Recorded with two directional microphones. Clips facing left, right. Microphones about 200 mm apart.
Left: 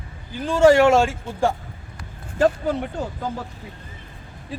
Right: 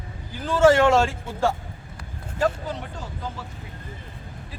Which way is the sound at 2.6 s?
55° left (ahead or behind).